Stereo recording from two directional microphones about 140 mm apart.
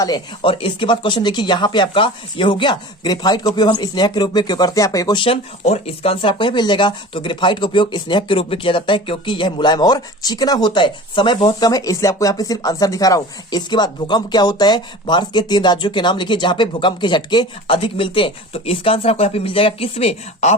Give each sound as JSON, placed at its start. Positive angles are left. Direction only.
{"t": 0.0, "sound": "speech", "side_deg": 35}